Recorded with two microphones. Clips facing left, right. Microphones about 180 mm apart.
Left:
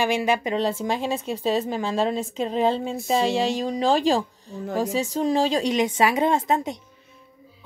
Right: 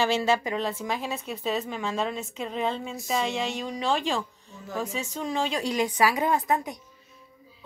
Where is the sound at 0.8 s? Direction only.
30° left (ahead or behind).